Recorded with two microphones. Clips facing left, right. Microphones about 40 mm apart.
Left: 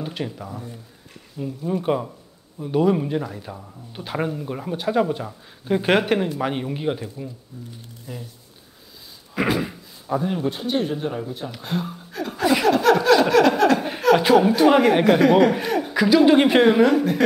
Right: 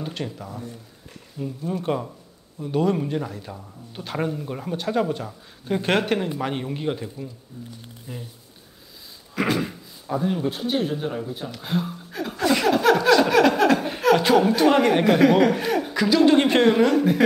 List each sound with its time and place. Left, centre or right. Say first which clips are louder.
0.0 s speech: left 2 dB; centre
8.1 s speech: left 1 dB; centre
9.3 s speech: left 1 dB; centre